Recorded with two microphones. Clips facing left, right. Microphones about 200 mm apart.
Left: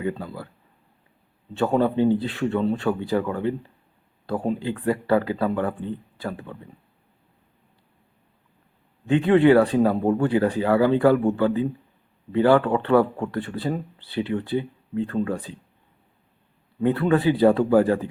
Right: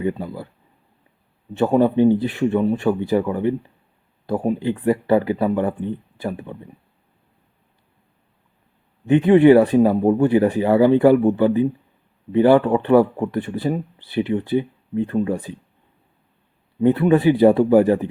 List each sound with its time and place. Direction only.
0.0 s speech: 15° right (ahead or behind)
1.5 s speech: 15° right (ahead or behind)
9.0 s speech: 20° right (ahead or behind)
16.8 s speech: 20° right (ahead or behind)